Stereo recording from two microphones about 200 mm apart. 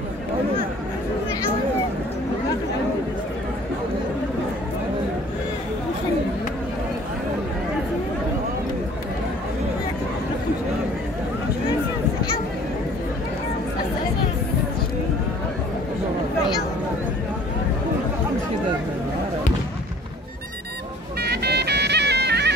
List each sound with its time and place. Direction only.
21.2 s music: 55° right (ahead or behind)